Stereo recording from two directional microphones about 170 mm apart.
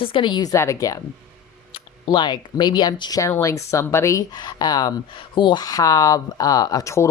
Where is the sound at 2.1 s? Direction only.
25° left (ahead or behind).